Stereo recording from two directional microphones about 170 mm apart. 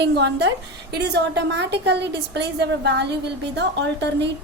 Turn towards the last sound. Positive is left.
turn(degrees=-90)